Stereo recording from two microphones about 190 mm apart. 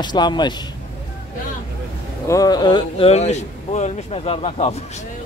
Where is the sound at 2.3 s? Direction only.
20° left (ahead or behind).